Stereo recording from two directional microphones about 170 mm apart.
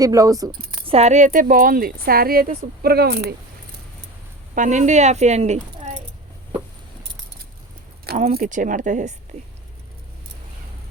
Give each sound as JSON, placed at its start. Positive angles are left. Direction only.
{"t": 0.0, "sound": "speech", "side_deg": -20}
{"t": 0.9, "sound": "speech", "side_deg": -40}
{"t": 4.5, "sound": "speech", "side_deg": -45}
{"t": 8.3, "sound": "speech", "side_deg": -55}